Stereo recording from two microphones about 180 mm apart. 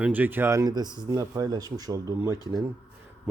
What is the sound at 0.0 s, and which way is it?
Speech, 10° right (ahead or behind).